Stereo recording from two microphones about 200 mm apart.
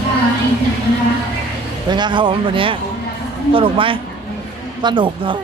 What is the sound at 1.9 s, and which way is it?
Speech, 20° right (ahead or behind).